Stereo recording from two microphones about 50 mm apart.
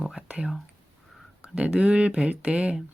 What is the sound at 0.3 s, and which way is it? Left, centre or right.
Speech, centre.